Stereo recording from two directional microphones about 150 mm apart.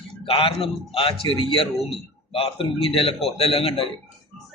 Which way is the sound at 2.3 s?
35° left (ahead or behind).